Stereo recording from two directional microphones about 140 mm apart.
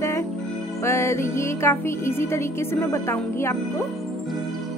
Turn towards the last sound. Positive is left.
turn(degrees=15)  # may be behind; listen again after turning